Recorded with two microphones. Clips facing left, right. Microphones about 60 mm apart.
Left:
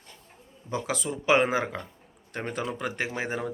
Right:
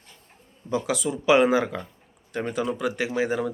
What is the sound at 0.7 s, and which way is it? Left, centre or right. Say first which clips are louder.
Speech: right 5 dB; left.